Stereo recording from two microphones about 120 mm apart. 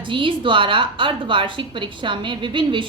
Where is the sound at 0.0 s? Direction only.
45° right (ahead or behind).